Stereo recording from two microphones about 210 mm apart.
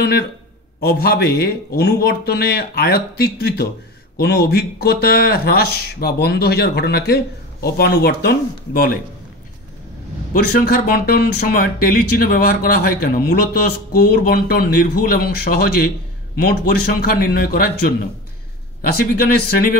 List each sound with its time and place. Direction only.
0.7 s speech: 45° left (ahead or behind)
10.3 s speech: 45° left (ahead or behind)